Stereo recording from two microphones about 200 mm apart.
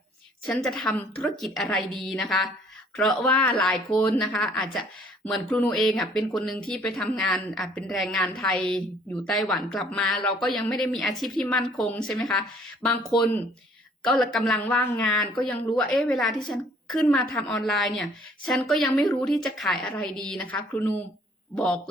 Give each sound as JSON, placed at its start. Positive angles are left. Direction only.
{"t": 0.4, "sound": "a woman's voice", "side_deg": 5}